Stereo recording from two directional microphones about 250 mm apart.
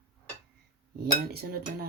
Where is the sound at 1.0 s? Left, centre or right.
Right.